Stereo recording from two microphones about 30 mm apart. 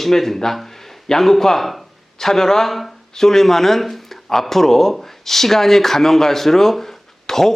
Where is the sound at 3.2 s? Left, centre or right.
Centre.